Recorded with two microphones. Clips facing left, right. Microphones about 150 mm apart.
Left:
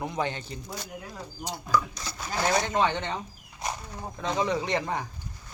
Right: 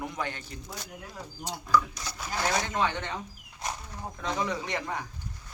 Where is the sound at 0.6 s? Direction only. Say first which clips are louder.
Left 3 dB; centre (ahead or behind).